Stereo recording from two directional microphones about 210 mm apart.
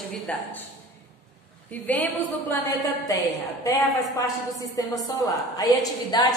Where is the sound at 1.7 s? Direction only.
5° left (ahead or behind).